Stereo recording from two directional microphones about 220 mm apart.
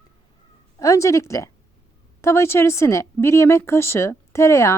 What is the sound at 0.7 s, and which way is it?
Speech, 15° left (ahead or behind).